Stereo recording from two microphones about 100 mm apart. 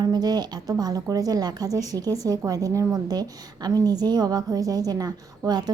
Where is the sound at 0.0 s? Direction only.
45° right (ahead or behind).